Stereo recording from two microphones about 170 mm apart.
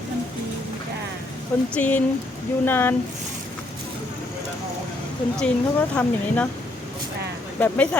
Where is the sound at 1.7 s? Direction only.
10° left (ahead or behind).